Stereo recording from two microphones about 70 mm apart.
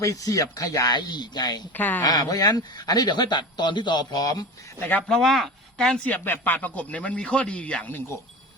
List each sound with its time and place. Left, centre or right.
0.0 s speech: left
0.9 s speech: left
1.7 s speech: left
2.0 s speech: left
5.0 s speech: centre
5.7 s a woman's voice: centre
6.1 s speech: left